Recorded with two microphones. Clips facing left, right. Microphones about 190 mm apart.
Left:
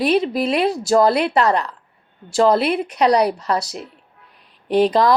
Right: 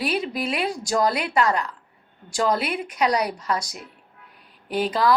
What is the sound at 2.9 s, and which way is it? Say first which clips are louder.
Speech: left 6 dB; 35° left (ahead or behind).